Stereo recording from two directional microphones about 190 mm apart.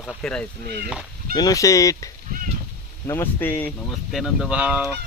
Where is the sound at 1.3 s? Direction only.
20° left (ahead or behind).